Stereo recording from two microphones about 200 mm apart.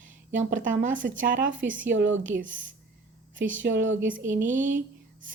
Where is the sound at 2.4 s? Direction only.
40° right (ahead or behind).